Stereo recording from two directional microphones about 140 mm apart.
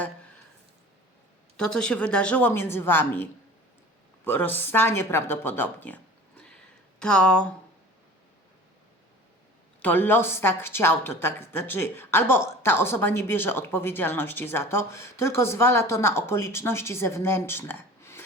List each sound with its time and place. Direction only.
1.5 s a woman's voice: 5° left (ahead or behind)
9.8 s a woman's voice: 15° left (ahead or behind)